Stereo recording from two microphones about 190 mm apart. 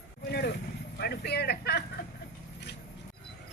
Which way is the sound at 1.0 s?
60° left (ahead or behind).